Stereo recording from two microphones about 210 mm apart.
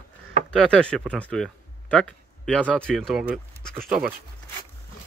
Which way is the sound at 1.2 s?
5° left (ahead or behind).